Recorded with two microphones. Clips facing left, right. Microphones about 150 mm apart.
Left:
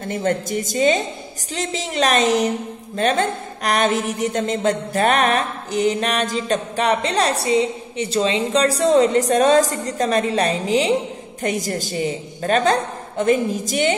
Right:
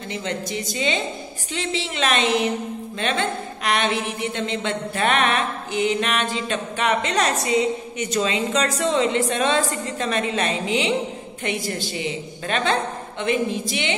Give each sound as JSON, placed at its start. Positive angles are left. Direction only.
{"t": 0.1, "sound": "a woman's voice", "side_deg": 50}